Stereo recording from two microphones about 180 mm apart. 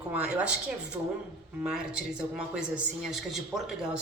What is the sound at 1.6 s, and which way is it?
Speech, 5° right (ahead or behind).